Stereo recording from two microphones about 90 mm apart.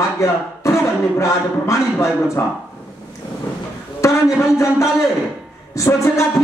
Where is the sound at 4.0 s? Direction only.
35° left (ahead or behind).